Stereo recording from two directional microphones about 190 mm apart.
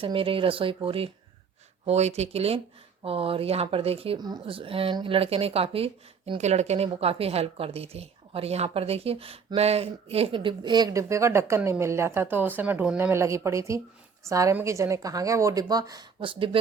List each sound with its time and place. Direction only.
0.0 s a woman's voice: 30° right (ahead or behind)